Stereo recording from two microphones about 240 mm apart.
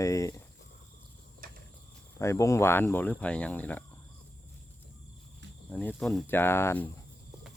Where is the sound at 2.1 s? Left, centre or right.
Centre.